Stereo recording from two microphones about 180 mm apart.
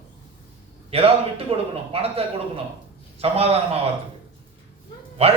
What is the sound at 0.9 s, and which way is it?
A man's voice, 30° right (ahead or behind).